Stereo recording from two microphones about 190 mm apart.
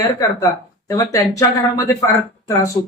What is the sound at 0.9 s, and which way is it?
Speech, 15° left (ahead or behind).